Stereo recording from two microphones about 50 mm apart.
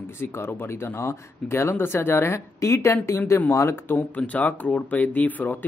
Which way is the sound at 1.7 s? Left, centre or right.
Left.